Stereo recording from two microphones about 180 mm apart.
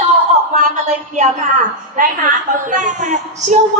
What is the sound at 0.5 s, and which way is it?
A woman's voice, 40° right (ahead or behind).